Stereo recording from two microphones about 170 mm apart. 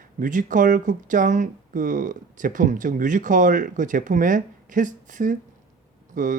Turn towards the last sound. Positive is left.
turn(degrees=-50)  # may be behind; listen again after turning